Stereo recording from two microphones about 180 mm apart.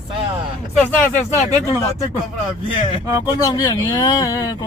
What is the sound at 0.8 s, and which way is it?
Cattle, 5° left (ahead or behind).